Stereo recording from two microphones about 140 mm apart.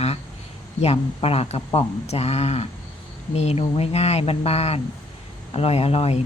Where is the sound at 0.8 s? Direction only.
45° left (ahead or behind).